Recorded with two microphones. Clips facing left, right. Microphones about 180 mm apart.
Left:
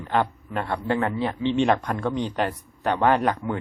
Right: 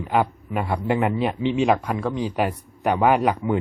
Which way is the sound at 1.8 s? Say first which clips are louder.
Right 1 dB; centre (ahead or behind).